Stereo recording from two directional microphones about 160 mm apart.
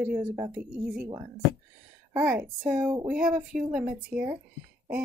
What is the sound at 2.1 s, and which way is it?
A woman's voice, 10° right (ahead or behind).